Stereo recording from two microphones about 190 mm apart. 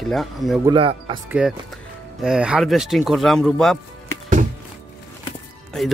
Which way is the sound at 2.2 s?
5° right (ahead or behind).